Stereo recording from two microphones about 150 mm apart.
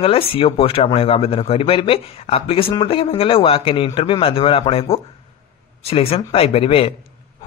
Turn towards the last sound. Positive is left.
turn(degrees=40)  # may be behind; listen again after turning